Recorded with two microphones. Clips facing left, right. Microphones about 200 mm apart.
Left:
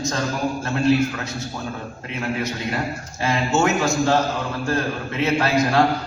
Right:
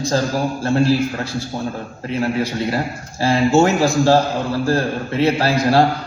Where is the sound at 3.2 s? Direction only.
30° right (ahead or behind).